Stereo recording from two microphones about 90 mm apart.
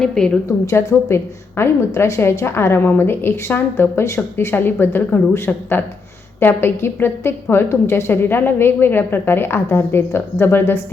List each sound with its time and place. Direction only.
0.0 s a woman's voice: 5° left (ahead or behind)
0.6 s a woman's voice: 35° left (ahead or behind)